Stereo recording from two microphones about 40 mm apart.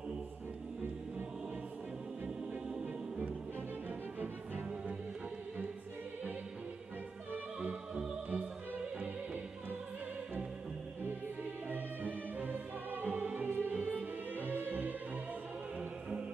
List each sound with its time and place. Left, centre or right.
8.7 s music: right
11.7 s music: right
13.7 s music: right
14.3 s music: right